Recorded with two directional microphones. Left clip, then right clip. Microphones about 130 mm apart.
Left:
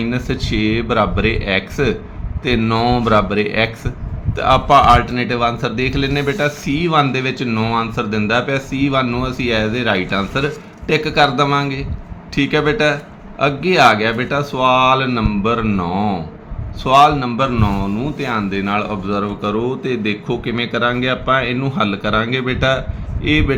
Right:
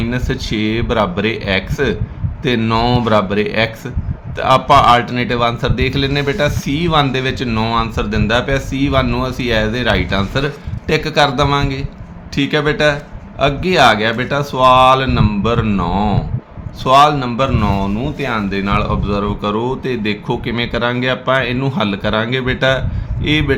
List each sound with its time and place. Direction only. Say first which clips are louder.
0.0 s speech: right 1 dB; 20° right (ahead or behind)